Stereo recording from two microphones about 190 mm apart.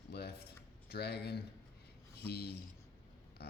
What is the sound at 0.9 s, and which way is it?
Speech, 60° left (ahead or behind).